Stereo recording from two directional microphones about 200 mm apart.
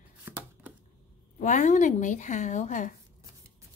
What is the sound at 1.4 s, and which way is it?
A woman's voice, 40° left (ahead or behind).